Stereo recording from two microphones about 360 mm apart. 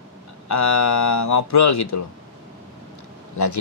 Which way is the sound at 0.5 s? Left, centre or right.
Left.